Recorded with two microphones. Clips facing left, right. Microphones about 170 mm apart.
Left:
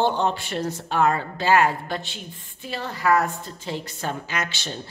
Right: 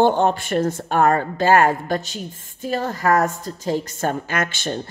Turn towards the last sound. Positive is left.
turn(degrees=-50)  # may be behind; listen again after turning